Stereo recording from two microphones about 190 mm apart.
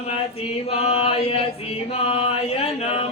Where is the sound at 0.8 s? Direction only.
30° left (ahead or behind).